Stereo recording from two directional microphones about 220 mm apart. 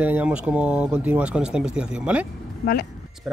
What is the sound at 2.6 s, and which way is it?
Speech, 45° left (ahead or behind).